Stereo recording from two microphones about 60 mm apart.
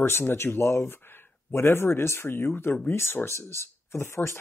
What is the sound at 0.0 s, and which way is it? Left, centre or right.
Speech, left.